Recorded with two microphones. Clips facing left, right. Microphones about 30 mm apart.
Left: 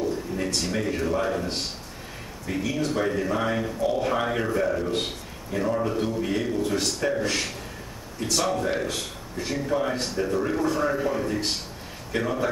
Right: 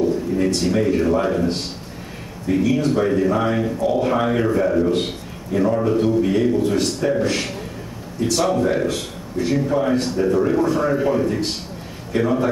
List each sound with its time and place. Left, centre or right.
0.4 s speech: centre